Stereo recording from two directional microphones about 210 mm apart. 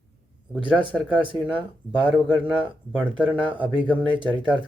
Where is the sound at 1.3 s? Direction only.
5° right (ahead or behind).